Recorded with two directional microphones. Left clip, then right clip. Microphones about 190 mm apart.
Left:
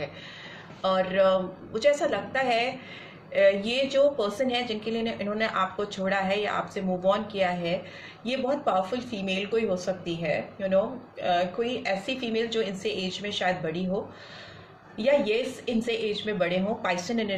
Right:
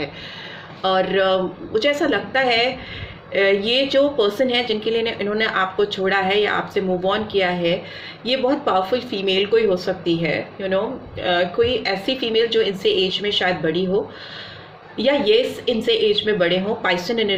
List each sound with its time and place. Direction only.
0.8 s speech: 35° right (ahead or behind)
14.9 s speech: 35° right (ahead or behind)